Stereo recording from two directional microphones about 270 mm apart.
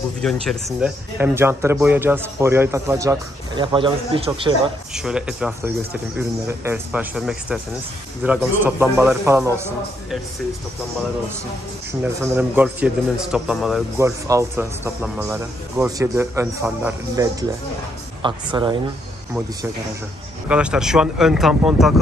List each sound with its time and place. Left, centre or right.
0.2 s a man's voice: centre
4.9 s a man's voice: centre
12.0 s a man's voice: centre
20.4 s speech: centre